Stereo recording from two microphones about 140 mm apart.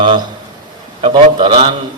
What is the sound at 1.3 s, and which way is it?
Speech, 35° right (ahead or behind).